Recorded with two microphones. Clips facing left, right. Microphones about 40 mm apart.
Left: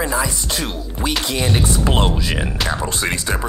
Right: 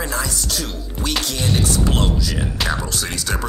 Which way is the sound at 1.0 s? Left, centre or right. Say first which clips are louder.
Left 2 dB; left.